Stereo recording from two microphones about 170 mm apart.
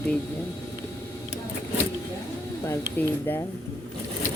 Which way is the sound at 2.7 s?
15° left (ahead or behind).